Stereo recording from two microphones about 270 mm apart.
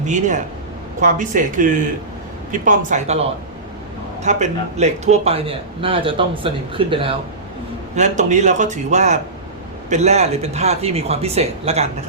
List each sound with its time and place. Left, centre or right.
0.0 s a man's voice: right